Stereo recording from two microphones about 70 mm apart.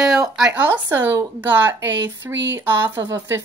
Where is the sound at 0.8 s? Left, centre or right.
Right.